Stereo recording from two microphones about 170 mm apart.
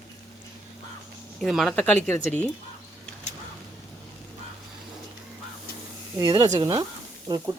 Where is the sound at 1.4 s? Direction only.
Centre (ahead or behind).